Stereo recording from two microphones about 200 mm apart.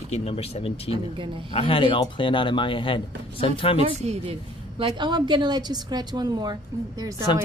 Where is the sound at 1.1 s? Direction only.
25° right (ahead or behind).